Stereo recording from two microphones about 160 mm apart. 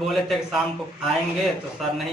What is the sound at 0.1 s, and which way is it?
Speech, centre (ahead or behind).